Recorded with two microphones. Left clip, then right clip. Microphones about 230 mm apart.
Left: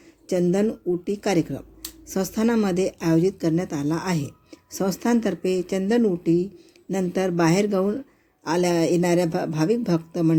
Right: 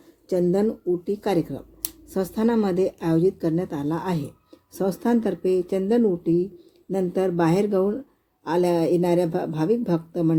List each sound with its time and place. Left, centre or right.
0.3 s speech: left